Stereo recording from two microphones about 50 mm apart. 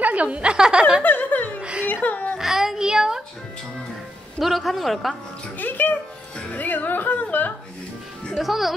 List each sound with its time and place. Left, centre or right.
0.0 s a woman's voice: right
1.0 s a sound: left
1.6 s whimper: right
1.9 s speech: left
2.3 s a child's voice: centre
4.4 s a man's voice: centre
5.6 s music: left
6.5 s speech: left
8.4 s a man's voice: centre